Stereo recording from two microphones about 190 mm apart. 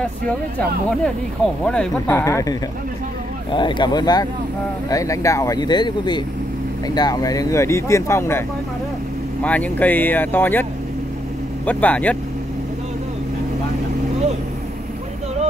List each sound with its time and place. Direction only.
0.6 s speech: 5° left (ahead or behind)
3.5 s speech: 25° left (ahead or behind); by 12.2 s 5° left (ahead or behind)